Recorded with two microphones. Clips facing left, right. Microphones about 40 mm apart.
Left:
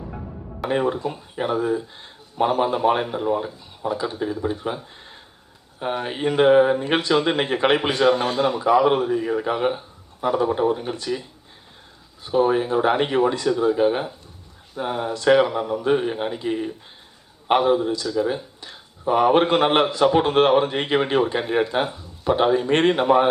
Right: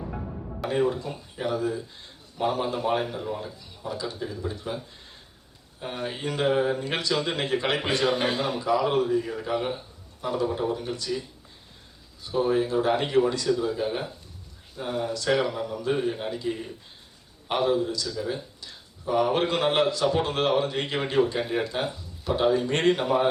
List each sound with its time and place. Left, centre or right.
0.7 s a man's voice: left
5.8 s a man's voice: left
7.8 s a man's voice: left
12.2 s a man's voice: left